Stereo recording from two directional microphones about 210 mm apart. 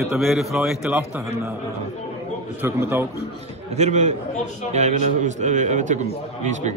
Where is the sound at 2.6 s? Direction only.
10° right (ahead or behind).